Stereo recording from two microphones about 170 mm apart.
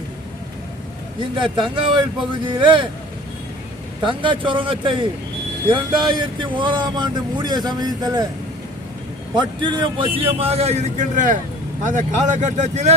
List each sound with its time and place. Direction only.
1.4 s speech: 30° right (ahead or behind)
4.0 s speech: 30° right (ahead or behind)
9.3 s a man's voice: 25° right (ahead or behind); by 12.9 s 45° right (ahead or behind)